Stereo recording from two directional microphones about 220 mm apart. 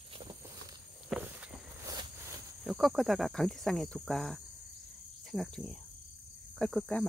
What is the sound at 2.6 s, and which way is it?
Speech, centre (ahead or behind).